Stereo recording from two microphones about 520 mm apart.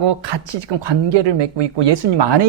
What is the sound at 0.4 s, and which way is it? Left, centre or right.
Speech, right.